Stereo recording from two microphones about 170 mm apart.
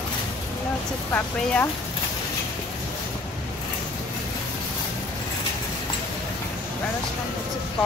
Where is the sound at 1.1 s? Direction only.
10° left (ahead or behind).